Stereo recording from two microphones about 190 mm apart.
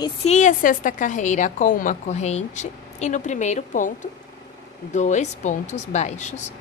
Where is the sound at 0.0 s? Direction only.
35° left (ahead or behind).